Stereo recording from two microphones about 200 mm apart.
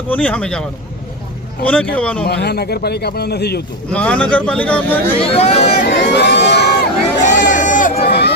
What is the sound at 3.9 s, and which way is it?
Speech, 5° left (ahead or behind).